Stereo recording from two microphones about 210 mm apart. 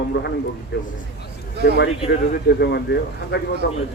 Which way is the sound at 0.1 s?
60° left (ahead or behind).